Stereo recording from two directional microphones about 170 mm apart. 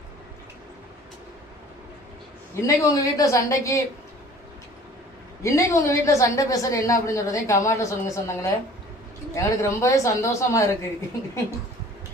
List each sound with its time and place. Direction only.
2.6 s a woman's voice: 20° left (ahead or behind)
5.4 s a woman's voice: 20° left (ahead or behind)